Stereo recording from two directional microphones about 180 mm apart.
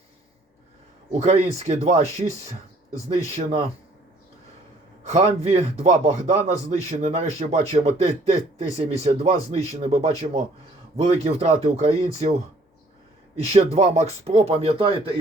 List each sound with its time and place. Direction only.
1.2 s a man's voice: 35° right (ahead or behind)
5.0 s a man's voice: 40° right (ahead or behind)
13.3 s a man's voice: 35° right (ahead or behind)